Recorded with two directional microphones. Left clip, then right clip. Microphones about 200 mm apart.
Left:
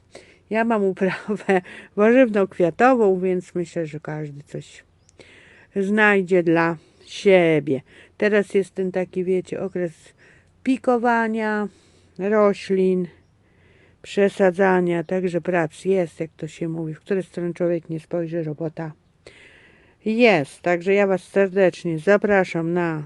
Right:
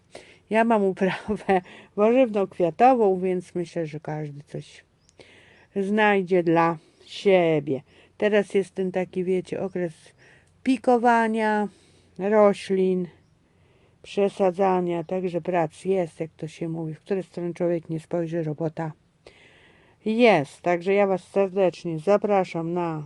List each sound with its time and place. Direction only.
0.1 s speech: centre (ahead or behind)
14.0 s speech: 20° left (ahead or behind); by 18.9 s centre (ahead or behind)
19.2 s a sound: 15° left (ahead or behind)
20.1 s speech: 5° left (ahead or behind)